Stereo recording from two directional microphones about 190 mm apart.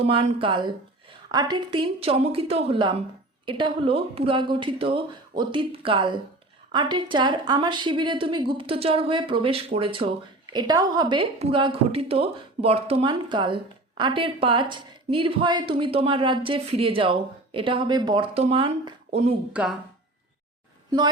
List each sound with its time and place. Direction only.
0.0 s a woman's voice: 30° right (ahead or behind)
19.6 s a woman's voice: 5° right (ahead or behind)